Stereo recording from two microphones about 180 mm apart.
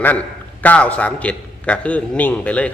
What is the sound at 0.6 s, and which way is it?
A man's voice, 10° left (ahead or behind).